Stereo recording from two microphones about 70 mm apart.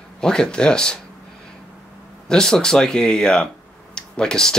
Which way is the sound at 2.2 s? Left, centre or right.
Centre.